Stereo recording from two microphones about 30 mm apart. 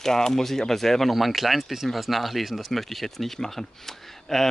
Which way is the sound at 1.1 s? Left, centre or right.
Centre.